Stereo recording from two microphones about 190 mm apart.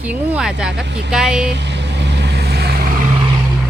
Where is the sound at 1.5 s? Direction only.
65° right (ahead or behind).